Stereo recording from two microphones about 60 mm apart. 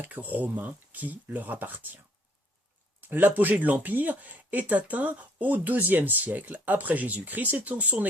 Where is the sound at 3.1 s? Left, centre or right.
Right.